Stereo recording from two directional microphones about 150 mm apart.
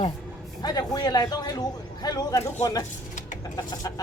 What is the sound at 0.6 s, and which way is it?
Speech, 25° left (ahead or behind).